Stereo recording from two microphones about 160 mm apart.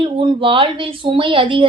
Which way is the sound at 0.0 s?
30° right (ahead or behind).